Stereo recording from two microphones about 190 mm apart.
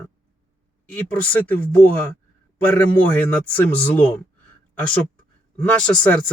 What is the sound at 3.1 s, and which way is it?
Speech, 10° left (ahead or behind).